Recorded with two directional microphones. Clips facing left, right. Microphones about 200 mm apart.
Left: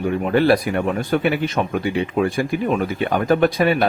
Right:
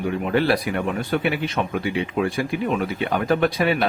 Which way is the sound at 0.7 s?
45° left (ahead or behind).